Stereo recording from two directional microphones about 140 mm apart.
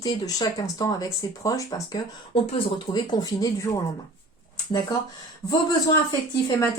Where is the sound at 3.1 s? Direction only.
25° left (ahead or behind).